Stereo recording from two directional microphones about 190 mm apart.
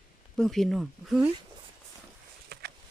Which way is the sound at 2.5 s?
55° right (ahead or behind).